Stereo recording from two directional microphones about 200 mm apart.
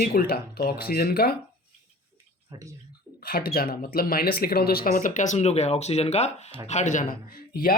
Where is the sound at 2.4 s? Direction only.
15° right (ahead or behind).